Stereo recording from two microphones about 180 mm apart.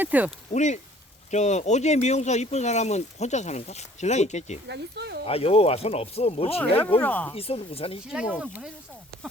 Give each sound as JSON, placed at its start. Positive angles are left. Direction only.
{"t": 0.0, "sound": "speech", "side_deg": -10}
{"t": 0.5, "sound": "speech", "side_deg": 40}
{"t": 4.7, "sound": "speech", "side_deg": -65}
{"t": 5.2, "sound": "speech", "side_deg": 35}
{"t": 6.6, "sound": "speech", "side_deg": 10}
{"t": 7.3, "sound": "speech", "side_deg": 35}
{"t": 8.0, "sound": "speech", "side_deg": -5}